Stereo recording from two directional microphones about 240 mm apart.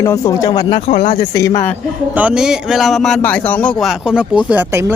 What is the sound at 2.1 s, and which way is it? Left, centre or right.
A man's voice, centre.